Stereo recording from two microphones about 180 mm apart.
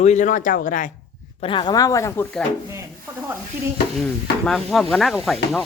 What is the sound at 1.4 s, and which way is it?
Speech, 30° left (ahead or behind).